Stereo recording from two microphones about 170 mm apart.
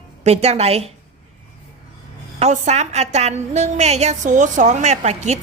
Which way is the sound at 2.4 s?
45° right (ahead or behind).